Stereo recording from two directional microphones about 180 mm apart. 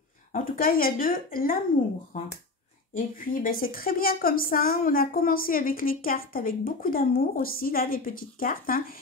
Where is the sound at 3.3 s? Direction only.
50° left (ahead or behind).